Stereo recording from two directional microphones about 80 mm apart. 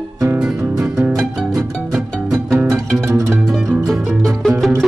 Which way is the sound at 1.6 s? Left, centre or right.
Centre.